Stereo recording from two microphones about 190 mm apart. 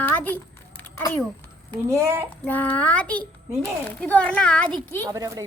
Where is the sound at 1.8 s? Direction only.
15° right (ahead or behind).